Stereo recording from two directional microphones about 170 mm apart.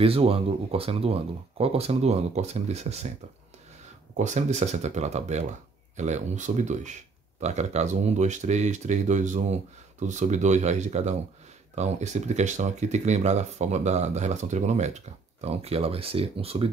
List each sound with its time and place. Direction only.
0.0 s speech: 35° right (ahead or behind)
4.2 s speech: 45° right (ahead or behind)